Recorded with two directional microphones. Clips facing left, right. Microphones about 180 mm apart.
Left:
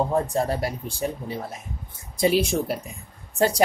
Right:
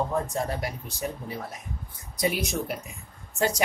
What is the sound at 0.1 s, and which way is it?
A woman's voice, 35° left (ahead or behind).